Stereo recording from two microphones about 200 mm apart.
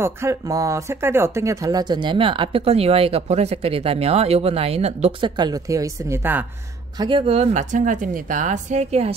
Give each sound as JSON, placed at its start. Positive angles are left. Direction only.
{"t": 0.0, "sound": "speech", "side_deg": -15}
{"t": 7.0, "sound": "a woman's voice", "side_deg": -25}